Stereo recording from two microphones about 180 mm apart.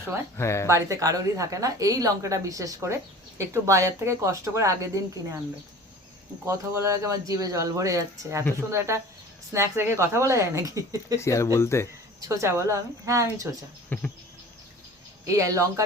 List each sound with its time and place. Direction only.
0.3 s speech: 15° left (ahead or behind)
0.7 s a woman's voice: 20° right (ahead or behind)
6.4 s a woman's voice: 15° right (ahead or behind)
11.2 s speech: 15° left (ahead or behind)
12.3 s a woman's voice: 15° right (ahead or behind)
13.9 s speech: 10° left (ahead or behind)
15.4 s a woman's voice: 15° right (ahead or behind)